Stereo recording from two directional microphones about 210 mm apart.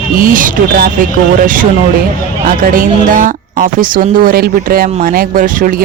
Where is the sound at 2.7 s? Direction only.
40° right (ahead or behind).